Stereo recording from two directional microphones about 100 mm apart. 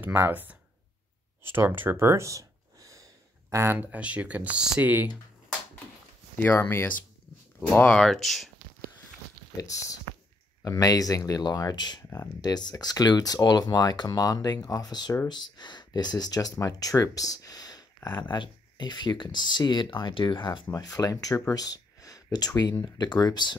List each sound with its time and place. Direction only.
0.0 s speech: 20° right (ahead or behind)
6.3 s speech: 20° left (ahead or behind)
7.7 s speech: 10° left (ahead or behind)
9.6 s speech: 35° left (ahead or behind); by 20.6 s 50° left (ahead or behind)
20.7 s speech: 40° left (ahead or behind)